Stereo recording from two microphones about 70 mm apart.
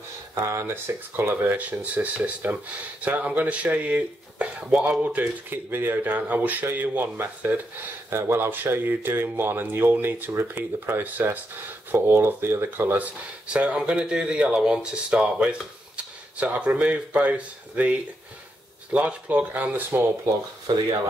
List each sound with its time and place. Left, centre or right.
0.3 s speech: right